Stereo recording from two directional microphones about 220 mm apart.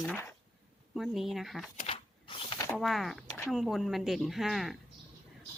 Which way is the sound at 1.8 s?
25° left (ahead or behind).